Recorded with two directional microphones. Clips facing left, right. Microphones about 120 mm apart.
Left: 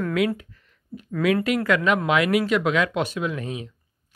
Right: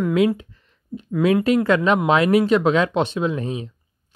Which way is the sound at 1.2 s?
30° right (ahead or behind).